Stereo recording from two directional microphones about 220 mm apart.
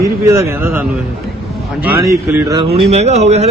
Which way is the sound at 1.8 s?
10° right (ahead or behind).